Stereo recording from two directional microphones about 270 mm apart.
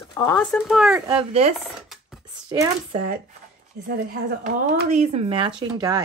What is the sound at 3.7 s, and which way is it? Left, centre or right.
A woman's voice, right.